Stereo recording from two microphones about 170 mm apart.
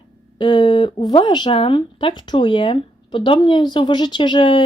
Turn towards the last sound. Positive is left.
turn(degrees=25)  # may be behind; listen again after turning